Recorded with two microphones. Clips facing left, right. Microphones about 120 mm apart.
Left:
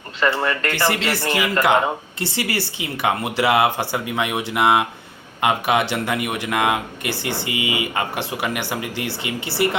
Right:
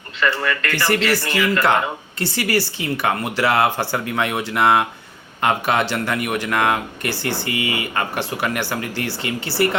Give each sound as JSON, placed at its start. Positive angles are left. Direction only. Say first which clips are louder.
{"t": 0.2, "sound": "speech", "louder": "left 1 dB", "side_deg": 25}